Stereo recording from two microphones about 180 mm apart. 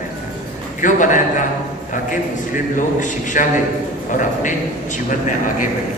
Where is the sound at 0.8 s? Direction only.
45° left (ahead or behind).